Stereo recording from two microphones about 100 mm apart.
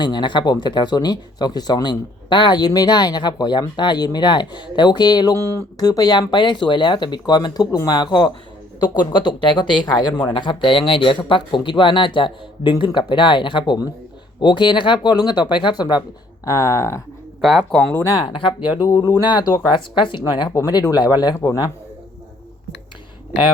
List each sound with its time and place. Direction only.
0.0 s speech: 50° left (ahead or behind)
5.3 s speech: 25° left (ahead or behind)
5.8 s speech: 40° left (ahead or behind)
16.5 s speech: 30° left (ahead or behind)
17.4 s speech: centre (ahead or behind)
17.9 s speech: 30° left (ahead or behind)
18.2 s speech: 55° left (ahead or behind)
18.8 s speech: 35° left (ahead or behind); by 20.5 s 50° left (ahead or behind)
20.5 s speech: 30° left (ahead or behind)
20.9 s speech: 45° left (ahead or behind)